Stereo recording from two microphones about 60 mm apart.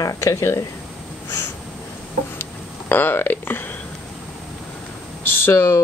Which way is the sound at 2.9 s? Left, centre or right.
Left.